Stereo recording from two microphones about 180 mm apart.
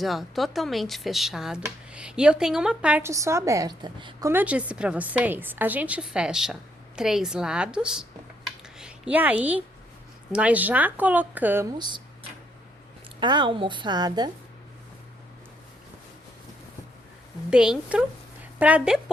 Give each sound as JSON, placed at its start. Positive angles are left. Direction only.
{"t": 0.0, "sound": "a woman's voice", "side_deg": 0}
{"t": 4.3, "sound": "a woman's voice", "side_deg": -10}
{"t": 11.8, "sound": "a woman's voice", "side_deg": -25}
{"t": 13.1, "sound": "a woman's voice", "side_deg": -25}
{"t": 17.5, "sound": "a woman's voice", "side_deg": -5}